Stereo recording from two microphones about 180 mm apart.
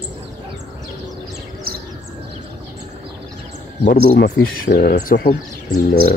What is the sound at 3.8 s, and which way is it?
Speech, 50° left (ahead or behind).